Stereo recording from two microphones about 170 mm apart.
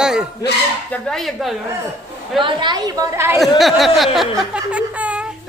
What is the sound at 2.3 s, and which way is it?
A woman's voice, 30° right (ahead or behind).